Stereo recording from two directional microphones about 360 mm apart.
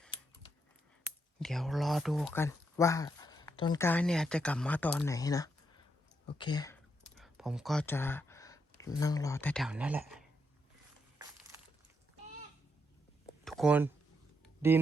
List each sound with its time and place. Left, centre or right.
1.4 s speech: centre
7.2 s speech: centre
13.4 s a sound: centre
14.6 s speech: centre